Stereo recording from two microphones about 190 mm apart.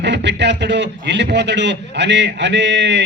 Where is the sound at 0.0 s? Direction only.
65° right (ahead or behind).